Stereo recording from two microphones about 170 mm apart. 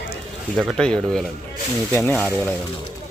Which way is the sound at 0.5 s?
Centre (ahead or behind).